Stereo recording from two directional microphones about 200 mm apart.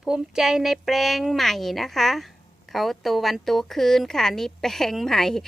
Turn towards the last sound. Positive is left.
turn(degrees=0)  # may be behind; listen again after turning